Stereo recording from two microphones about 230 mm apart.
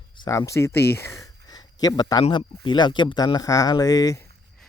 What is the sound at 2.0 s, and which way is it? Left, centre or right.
Speech, centre.